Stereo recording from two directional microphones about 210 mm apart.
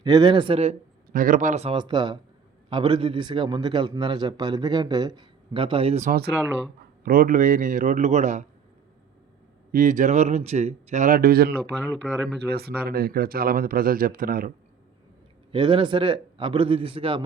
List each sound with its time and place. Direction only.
0.0 s a man's voice: 20° right (ahead or behind)
1.1 s a man's voice: 40° right (ahead or behind)
7.0 s speech: 45° right (ahead or behind)
9.7 s speech: 40° right (ahead or behind)
12.0 s speech: centre (ahead or behind)
12.5 s speech: 50° right (ahead or behind)
15.5 s a man's voice: 25° right (ahead or behind)